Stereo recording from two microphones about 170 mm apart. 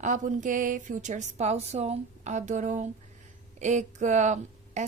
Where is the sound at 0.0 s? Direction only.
50° right (ahead or behind).